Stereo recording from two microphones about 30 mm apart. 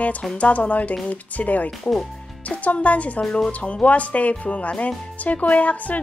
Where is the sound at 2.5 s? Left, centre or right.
Left.